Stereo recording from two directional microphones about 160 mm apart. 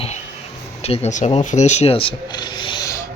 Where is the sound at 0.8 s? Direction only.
40° left (ahead or behind).